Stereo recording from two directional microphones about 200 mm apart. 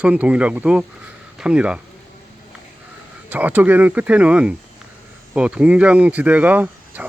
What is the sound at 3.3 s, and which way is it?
Speech, 10° right (ahead or behind).